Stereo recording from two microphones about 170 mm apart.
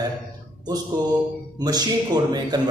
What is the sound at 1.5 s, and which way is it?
A man's voice, 25° right (ahead or behind).